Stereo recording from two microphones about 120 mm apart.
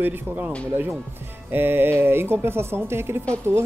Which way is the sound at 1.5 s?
20° right (ahead or behind).